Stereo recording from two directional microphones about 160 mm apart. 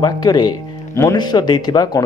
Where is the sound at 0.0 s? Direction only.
25° left (ahead or behind).